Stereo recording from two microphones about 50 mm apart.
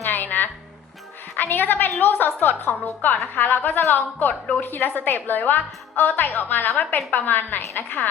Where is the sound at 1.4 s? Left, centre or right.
Left.